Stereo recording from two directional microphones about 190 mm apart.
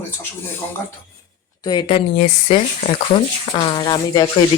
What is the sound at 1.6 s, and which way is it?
Speech, 20° left (ahead or behind).